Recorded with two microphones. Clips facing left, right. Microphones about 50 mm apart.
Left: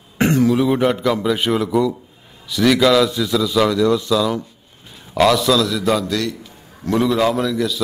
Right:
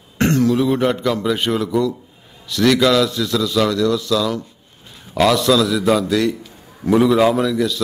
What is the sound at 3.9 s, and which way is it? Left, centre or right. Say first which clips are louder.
Speech: left 1 dB; left.